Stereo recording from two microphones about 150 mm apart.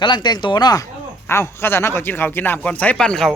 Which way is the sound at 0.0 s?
30° left (ahead or behind).